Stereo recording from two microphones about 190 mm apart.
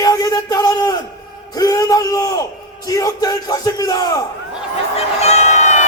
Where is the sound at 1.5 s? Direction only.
20° left (ahead or behind).